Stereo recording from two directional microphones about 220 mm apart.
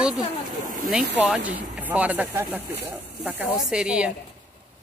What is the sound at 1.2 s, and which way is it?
A woman's voice, 5° right (ahead or behind).